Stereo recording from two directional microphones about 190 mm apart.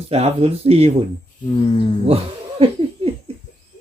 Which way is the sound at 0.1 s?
35° right (ahead or behind).